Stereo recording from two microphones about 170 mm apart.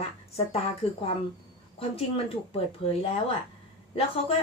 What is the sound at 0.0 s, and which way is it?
A woman's voice, 35° left (ahead or behind).